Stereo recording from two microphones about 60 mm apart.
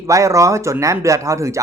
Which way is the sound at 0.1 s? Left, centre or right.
Right.